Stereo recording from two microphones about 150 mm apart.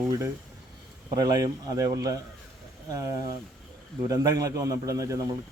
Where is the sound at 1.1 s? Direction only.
25° right (ahead or behind).